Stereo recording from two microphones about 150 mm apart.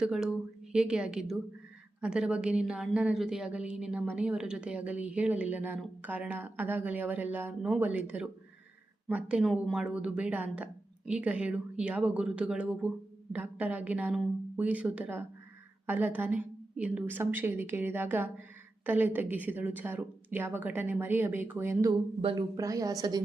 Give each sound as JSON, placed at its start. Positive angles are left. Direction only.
{"t": 0.0, "sound": "a woman's voice", "side_deg": -5}
{"t": 22.2, "sound": "speech", "side_deg": -35}
{"t": 22.5, "sound": "a woman's voice", "side_deg": -20}